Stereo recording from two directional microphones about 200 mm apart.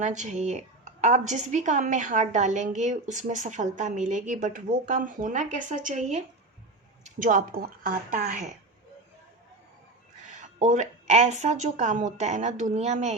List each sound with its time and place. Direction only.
0.0 s speech: 35° right (ahead or behind)
10.3 s speech: 35° right (ahead or behind)